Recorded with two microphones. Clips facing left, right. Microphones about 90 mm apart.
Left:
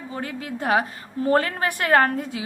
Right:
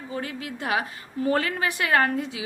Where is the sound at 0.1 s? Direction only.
35° left (ahead or behind).